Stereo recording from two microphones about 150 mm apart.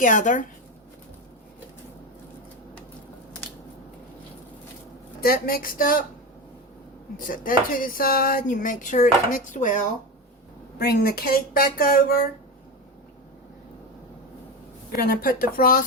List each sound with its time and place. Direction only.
0.0 s speech: 60° left (ahead or behind)
5.2 s speech: 80° left
7.2 s speech: 65° left (ahead or behind)
10.8 s speech: 90° left
15.1 s speech: 80° left